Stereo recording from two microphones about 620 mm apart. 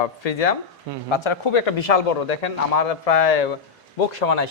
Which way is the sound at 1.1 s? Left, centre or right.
Left.